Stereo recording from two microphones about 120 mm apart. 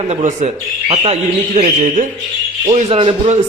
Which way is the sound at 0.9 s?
55° right (ahead or behind).